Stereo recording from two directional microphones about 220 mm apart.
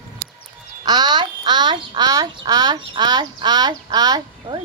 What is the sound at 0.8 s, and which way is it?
Speech, 20° right (ahead or behind).